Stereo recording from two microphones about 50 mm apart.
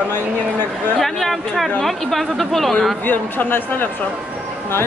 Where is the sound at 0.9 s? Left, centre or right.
Centre.